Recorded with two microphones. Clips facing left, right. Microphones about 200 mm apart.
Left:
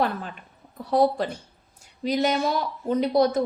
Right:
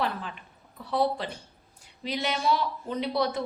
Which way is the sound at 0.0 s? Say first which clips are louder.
Left 5 dB; 45° left (ahead or behind).